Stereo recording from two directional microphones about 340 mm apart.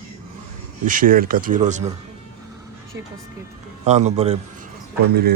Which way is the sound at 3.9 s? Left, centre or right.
Centre.